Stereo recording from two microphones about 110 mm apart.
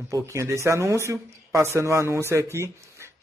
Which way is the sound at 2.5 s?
25° right (ahead or behind).